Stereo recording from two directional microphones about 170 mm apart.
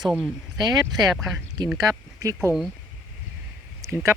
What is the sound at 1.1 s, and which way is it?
Speech, centre (ahead or behind).